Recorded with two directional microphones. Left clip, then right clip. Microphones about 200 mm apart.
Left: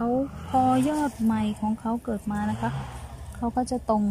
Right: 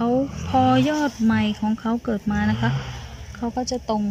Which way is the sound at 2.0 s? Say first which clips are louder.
Right 5 dB; 10° right (ahead or behind).